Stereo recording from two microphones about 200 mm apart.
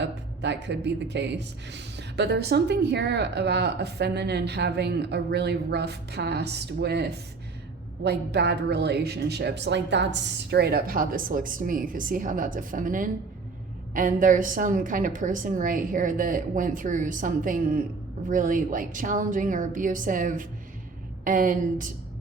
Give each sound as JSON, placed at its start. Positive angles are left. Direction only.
{"t": 0.0, "sound": "a man's voice", "side_deg": -60}